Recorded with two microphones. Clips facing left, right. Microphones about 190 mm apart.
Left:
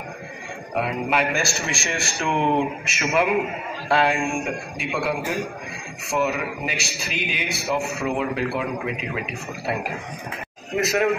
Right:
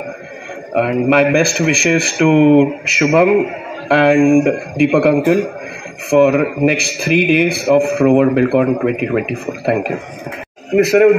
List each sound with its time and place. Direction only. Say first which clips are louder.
0.7 s speech: right 11 dB; 60° right (ahead or behind); by 3.3 s 90° right
3.9 s speech: right 12 dB; 60° right (ahead or behind)